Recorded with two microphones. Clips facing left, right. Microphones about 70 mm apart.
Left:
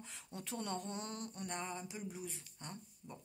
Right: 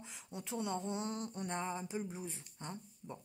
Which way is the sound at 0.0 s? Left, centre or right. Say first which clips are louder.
Right 2 dB; centre.